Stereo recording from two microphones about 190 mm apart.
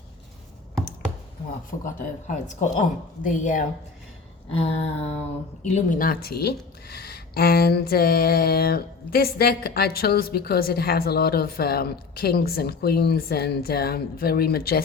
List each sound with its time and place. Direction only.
1.8 s speech: 45° left (ahead or behind)
4.5 s a sound: 30° left (ahead or behind)
5.6 s speech: 40° left (ahead or behind)